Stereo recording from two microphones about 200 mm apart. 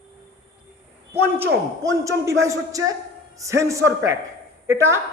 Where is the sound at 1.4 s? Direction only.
15° right (ahead or behind).